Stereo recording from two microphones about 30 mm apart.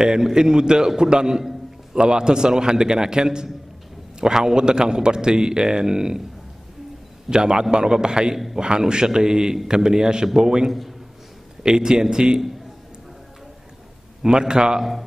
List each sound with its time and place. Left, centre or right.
0.0 s a man's voice: right
7.2 s a man's voice: right
14.2 s a man's voice: right
14.8 s speech: centre